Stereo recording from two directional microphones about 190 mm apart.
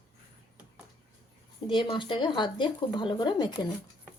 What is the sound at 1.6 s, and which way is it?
Speech, 25° left (ahead or behind).